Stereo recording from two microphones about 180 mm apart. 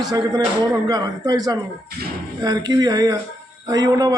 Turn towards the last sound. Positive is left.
turn(degrees=-20)  # may be behind; listen again after turning